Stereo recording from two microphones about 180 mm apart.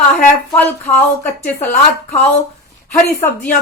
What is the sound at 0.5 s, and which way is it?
Speech, 5° left (ahead or behind).